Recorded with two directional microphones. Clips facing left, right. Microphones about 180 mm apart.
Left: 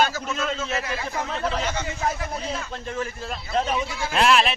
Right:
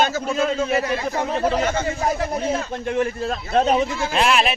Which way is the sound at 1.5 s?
50° right (ahead or behind).